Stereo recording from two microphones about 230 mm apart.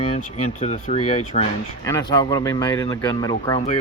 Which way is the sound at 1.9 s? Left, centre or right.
Centre.